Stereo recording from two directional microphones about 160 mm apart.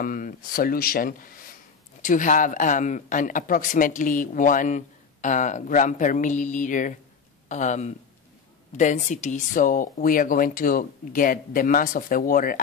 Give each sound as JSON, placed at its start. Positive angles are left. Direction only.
{"t": 0.0, "sound": "speech", "side_deg": 60}